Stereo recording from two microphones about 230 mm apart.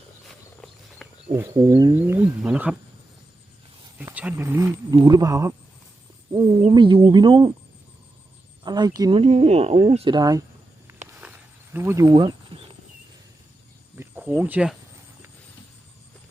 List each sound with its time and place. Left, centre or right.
1.3 s speech: centre
3.9 s speech: centre
8.6 s speech: centre
11.2 s a sound: centre
13.9 s speech: centre